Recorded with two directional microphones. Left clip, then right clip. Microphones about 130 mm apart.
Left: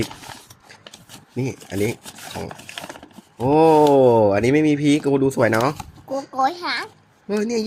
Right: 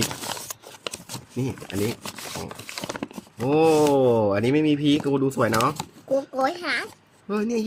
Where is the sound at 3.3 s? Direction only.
10° left (ahead or behind).